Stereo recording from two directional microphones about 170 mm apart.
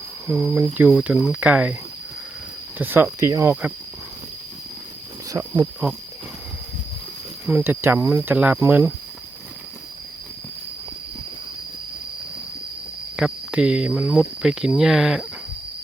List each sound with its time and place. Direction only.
0.3 s speech: 5° right (ahead or behind)
2.7 s speech: 10° right (ahead or behind)
5.3 s speech: 20° right (ahead or behind)
7.4 s speech: 10° right (ahead or behind)
13.1 s speech: 5° right (ahead or behind)